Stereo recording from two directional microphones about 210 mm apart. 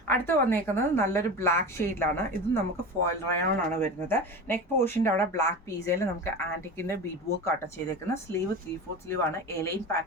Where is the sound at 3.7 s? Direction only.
10° left (ahead or behind).